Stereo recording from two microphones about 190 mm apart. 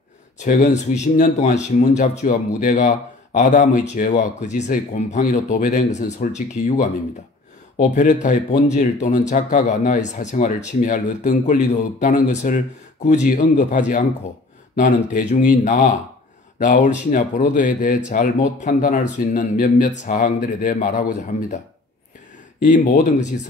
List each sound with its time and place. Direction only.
0.4 s speech: 40° left (ahead or behind)
22.6 s speech: 45° left (ahead or behind)